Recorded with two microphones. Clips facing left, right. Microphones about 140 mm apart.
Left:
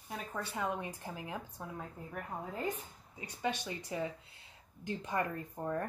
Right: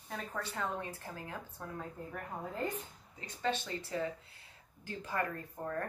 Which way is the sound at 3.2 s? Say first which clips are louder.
Right 1 dB; 15° left (ahead or behind).